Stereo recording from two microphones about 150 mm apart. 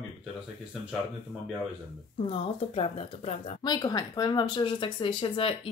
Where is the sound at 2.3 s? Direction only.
45° left (ahead or behind).